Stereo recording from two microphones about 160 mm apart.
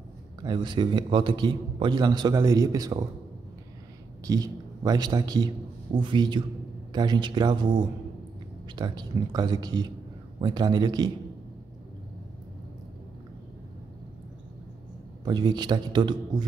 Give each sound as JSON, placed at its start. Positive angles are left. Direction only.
{"t": 0.4, "sound": "a man's voice", "side_deg": -30}
{"t": 4.3, "sound": "a man's voice", "side_deg": -25}
{"t": 15.2, "sound": "a man's voice", "side_deg": -25}